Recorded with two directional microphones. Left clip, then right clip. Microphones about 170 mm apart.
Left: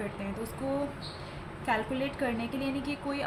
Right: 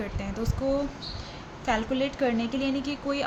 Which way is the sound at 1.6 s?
75° right (ahead or behind).